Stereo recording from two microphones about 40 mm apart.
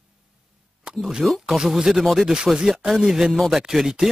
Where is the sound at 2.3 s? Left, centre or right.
Centre.